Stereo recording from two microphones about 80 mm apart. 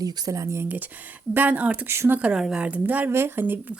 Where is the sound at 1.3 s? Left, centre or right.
Right.